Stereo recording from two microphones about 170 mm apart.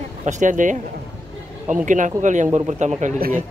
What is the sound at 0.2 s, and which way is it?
Speech, 45° right (ahead or behind).